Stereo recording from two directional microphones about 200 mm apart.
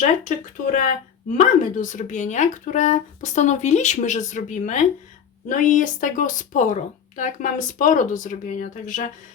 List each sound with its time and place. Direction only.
0.0 s a woman's voice: 40° left (ahead or behind)